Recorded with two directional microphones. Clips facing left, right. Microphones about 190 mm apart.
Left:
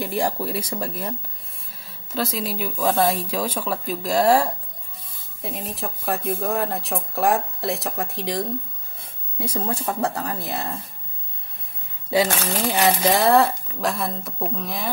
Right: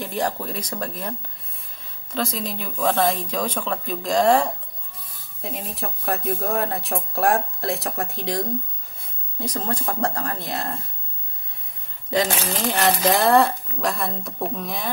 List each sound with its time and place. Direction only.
0.0 s speech: 10° left (ahead or behind)
2.1 s speech: 5° left (ahead or behind)
4.9 s a sound: 25° left (ahead or behind)
5.4 s speech: centre (ahead or behind)
12.4 s speech: centre (ahead or behind)